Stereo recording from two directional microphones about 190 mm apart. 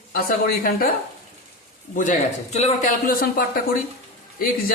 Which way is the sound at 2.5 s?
40° left (ahead or behind).